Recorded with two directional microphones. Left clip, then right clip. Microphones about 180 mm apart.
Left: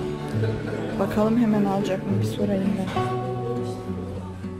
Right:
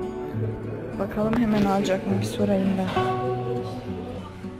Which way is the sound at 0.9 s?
20° left (ahead or behind).